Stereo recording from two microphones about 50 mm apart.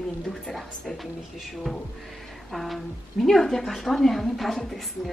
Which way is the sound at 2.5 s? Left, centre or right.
Centre.